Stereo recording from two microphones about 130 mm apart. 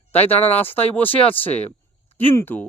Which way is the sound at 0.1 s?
15° left (ahead or behind).